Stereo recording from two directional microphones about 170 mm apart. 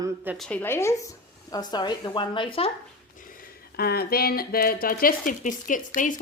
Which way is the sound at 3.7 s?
65° left (ahead or behind).